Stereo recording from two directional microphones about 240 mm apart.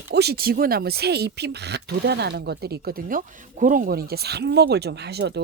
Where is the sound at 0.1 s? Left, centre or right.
Right.